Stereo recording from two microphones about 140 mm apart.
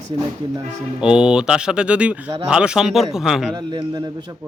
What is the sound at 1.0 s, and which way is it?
Speech, 5° right (ahead or behind).